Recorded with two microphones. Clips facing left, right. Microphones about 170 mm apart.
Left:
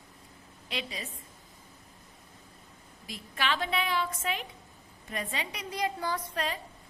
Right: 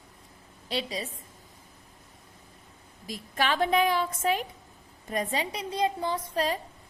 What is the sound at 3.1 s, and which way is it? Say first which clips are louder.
A woman's voice: right 4 dB; 45° right (ahead or behind).